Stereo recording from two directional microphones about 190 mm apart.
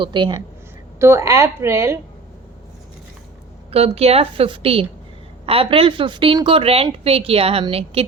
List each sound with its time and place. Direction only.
0.0 s a woman's voice: 25° right (ahead or behind)
0.9 s a woman's voice: 15° right (ahead or behind)
3.7 s a woman's voice: 30° right (ahead or behind)